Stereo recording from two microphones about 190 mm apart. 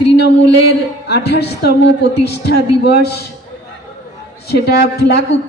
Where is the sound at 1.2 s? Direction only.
60° left (ahead or behind).